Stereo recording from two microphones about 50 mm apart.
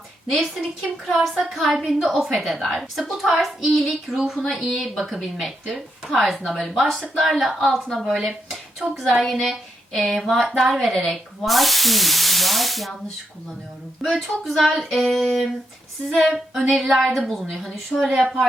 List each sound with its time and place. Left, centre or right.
0.5 s a woman's voice: centre
1.7 s a woman's voice: centre
4.1 s a woman's voice: centre
14.0 s a woman's voice: centre
18.0 s a woman's voice: right